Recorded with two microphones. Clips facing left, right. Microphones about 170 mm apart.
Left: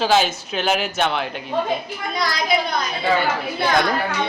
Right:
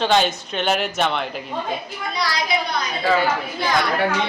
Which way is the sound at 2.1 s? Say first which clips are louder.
Left 1 dB; 50° left (ahead or behind).